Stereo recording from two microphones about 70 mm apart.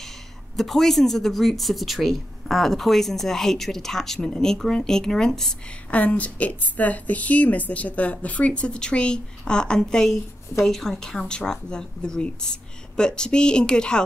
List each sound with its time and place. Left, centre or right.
0.6 s a woman's voice: centre
5.9 s a woman's voice: left